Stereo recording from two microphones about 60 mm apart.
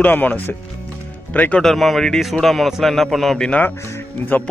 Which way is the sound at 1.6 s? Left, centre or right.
Centre.